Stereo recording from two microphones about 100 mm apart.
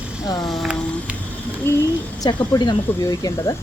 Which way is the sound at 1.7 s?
20° left (ahead or behind).